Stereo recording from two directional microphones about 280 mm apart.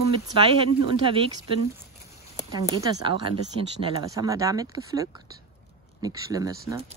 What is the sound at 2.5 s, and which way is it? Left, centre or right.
Speech, centre.